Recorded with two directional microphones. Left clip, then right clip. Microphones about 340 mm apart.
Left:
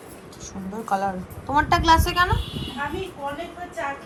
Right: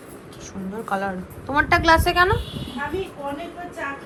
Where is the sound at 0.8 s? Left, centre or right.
Centre.